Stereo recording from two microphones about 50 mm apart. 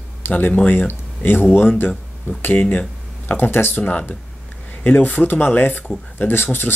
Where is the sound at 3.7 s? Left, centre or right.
Left.